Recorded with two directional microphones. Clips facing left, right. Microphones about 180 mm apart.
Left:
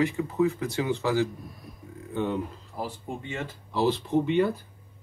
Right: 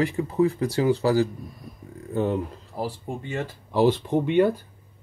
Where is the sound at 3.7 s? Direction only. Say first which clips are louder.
Right 4 dB; 55° right (ahead or behind).